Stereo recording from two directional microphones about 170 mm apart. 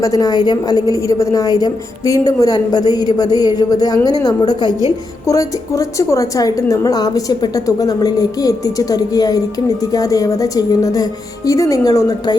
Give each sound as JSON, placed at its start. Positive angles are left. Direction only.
{"t": 0.0, "sound": "a woman's voice", "side_deg": 20}